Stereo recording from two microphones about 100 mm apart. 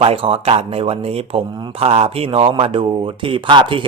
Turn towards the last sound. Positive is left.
turn(degrees=-55)  # may be behind; listen again after turning